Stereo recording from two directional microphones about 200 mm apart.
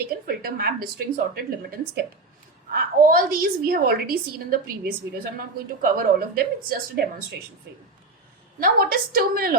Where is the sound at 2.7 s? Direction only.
45° right (ahead or behind).